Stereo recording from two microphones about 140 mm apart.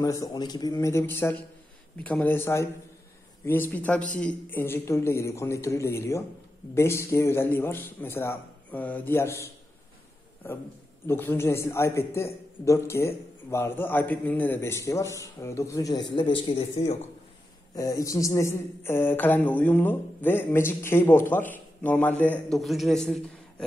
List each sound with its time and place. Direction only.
0.0 s a man's voice: 25° left (ahead or behind)
11.1 s a man's voice: 15° left (ahead or behind); by 17.0 s 50° left (ahead or behind)
17.7 s a man's voice: 25° left (ahead or behind)
22.6 s a woman's voice: centre (ahead or behind)